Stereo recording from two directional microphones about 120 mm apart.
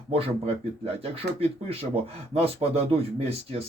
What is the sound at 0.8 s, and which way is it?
Speech, 55° right (ahead or behind).